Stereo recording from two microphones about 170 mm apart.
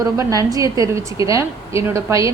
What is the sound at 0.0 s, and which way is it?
A woman's voice, 20° right (ahead or behind).